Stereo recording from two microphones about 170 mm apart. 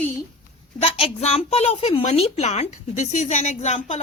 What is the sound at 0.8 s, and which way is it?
A woman's voice, 35° left (ahead or behind).